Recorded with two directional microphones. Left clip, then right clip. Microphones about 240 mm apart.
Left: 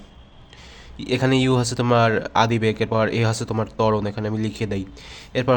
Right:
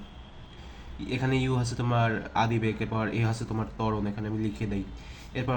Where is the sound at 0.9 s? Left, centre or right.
Left.